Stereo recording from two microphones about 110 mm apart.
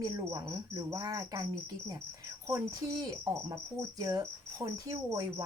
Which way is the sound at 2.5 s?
35° right (ahead or behind).